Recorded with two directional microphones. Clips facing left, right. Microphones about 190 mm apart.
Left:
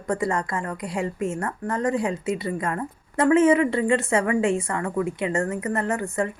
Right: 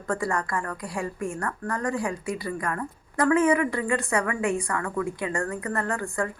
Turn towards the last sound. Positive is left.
turn(degrees=20)  # may be behind; listen again after turning